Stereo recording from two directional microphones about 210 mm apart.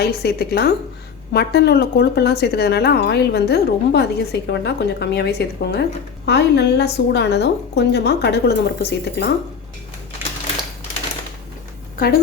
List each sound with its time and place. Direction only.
0.0 s a woman's voice: 50° left (ahead or behind)
11.9 s a woman's voice: 45° left (ahead or behind)